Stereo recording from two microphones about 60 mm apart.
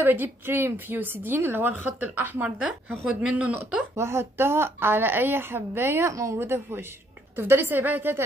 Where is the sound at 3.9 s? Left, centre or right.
Right.